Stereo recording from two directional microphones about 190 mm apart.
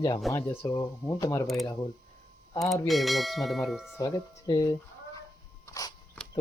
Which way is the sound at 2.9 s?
Centre (ahead or behind).